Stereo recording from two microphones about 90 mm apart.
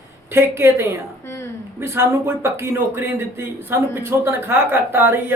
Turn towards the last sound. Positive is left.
turn(degrees=-25)  # may be behind; listen again after turning